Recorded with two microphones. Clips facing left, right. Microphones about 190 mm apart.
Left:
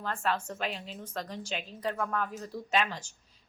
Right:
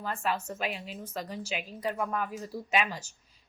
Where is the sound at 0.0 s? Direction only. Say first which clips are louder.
Even; 10° right (ahead or behind).